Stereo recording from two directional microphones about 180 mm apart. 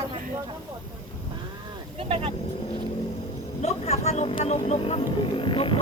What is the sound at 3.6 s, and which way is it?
Wild animals, 35° left (ahead or behind).